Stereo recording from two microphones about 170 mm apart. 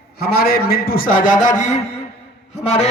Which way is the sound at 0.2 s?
65° left (ahead or behind).